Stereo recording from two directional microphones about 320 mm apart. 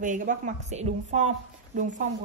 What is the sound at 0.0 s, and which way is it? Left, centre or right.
Speech, right.